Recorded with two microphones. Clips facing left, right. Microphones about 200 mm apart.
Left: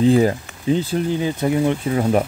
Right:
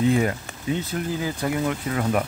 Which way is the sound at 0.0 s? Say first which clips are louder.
Left 6 dB; 30° left (ahead or behind).